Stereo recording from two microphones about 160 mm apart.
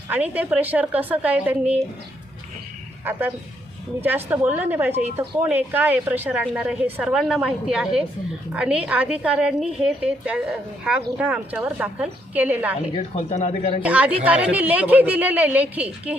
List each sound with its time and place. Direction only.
0.1 s a woman's voice: 10° right (ahead or behind)
3.0 s a woman's voice: 10° right (ahead or behind)
13.1 s speech: 45° left (ahead or behind)
13.8 s a woman's voice: 10° right (ahead or behind)